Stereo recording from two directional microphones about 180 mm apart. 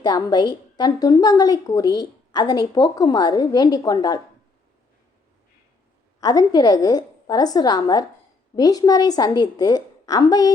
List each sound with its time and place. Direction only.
0.0 s a woman's voice: 25° left (ahead or behind)
6.1 s a woman's voice: 20° left (ahead or behind)